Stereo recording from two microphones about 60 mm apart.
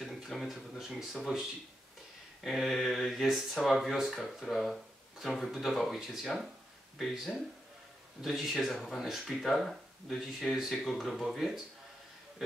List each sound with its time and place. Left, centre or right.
0.0 s speech: centre
2.4 s speech: centre
8.2 s speech: centre